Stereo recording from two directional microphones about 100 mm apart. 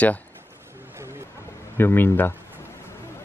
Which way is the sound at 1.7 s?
20° left (ahead or behind).